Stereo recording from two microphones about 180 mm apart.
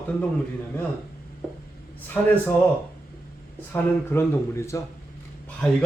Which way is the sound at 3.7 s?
10° left (ahead or behind).